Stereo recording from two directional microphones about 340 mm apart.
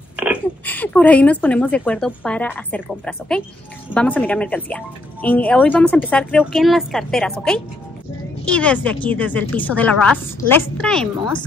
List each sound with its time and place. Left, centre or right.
0.1 s speech: centre